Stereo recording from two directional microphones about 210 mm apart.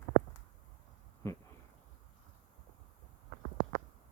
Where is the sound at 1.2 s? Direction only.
15° left (ahead or behind).